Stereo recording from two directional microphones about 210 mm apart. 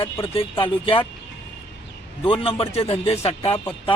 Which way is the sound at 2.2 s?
25° left (ahead or behind).